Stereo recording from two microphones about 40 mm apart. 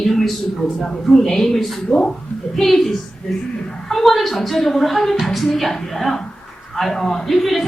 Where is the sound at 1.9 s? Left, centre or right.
Centre.